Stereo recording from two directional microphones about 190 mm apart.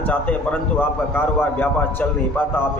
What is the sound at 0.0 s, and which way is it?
A man's voice, 10° left (ahead or behind).